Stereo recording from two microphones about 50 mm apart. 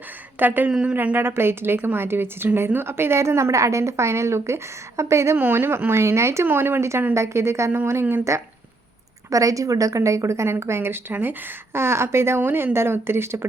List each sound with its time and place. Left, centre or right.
0.3 s speech: right
0.7 s speech: centre
1.1 s a woman's voice: right
5.4 s speech: right
6.4 s a woman's voice: right
8.3 s a woman's voice: right
11.1 s speech: right
11.7 s speech: right
12.4 s speech: right